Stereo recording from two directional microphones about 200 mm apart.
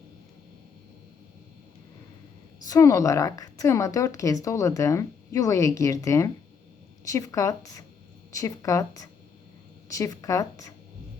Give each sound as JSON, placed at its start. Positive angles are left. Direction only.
{"t": 2.6, "sound": "speech", "side_deg": 15}